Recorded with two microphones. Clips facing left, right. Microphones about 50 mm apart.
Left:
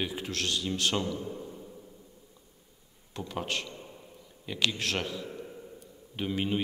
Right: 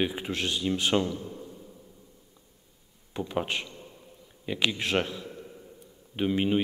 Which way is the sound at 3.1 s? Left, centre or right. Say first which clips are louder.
Right 4 dB; centre.